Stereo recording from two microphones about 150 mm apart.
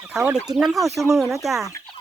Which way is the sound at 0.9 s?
20° right (ahead or behind).